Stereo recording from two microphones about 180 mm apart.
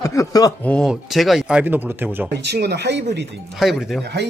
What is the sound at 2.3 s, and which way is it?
Speech, 70° right (ahead or behind).